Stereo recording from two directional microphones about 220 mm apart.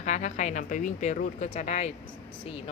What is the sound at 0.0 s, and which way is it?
A woman's voice, 35° left (ahead or behind).